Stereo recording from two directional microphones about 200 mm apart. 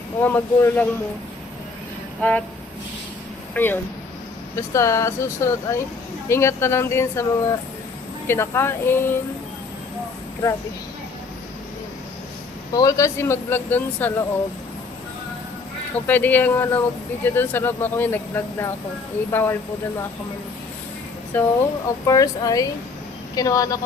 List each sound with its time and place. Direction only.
0.2 s speech: 10° left (ahead or behind)
2.2 s speech: 5° left (ahead or behind)
3.5 s speech: 10° left (ahead or behind)
12.7 s speech: 15° left (ahead or behind)
16.0 s speech: 10° left (ahead or behind)
21.3 s speech: 10° left (ahead or behind)